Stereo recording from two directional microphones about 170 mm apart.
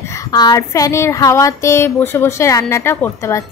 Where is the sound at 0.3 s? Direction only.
25° left (ahead or behind).